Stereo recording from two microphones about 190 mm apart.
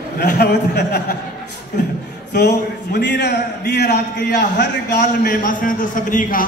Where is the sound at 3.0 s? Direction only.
65° left (ahead or behind).